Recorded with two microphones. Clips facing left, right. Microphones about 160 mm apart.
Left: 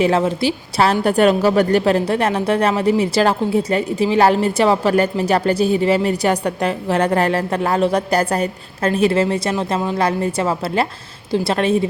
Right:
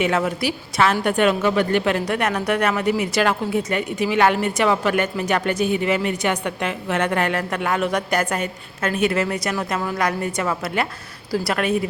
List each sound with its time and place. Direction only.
0.0 s a woman's voice: 30° left (ahead or behind)